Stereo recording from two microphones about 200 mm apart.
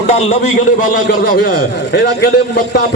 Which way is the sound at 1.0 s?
50° left (ahead or behind).